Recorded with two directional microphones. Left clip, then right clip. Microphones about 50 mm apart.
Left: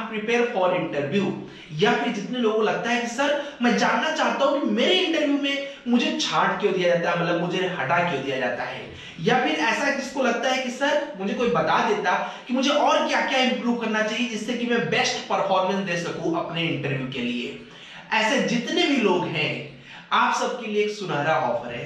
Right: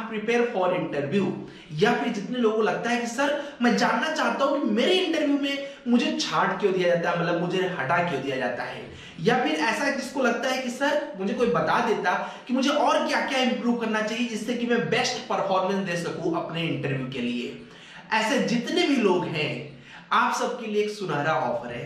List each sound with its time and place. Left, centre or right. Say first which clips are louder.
0.1 s speech: left 1 dB; right